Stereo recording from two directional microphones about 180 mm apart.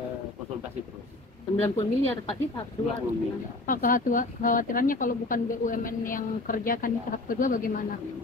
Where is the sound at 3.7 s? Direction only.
50° left (ahead or behind).